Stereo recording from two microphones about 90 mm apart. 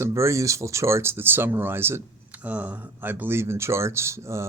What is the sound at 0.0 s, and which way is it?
Speech, 35° right (ahead or behind).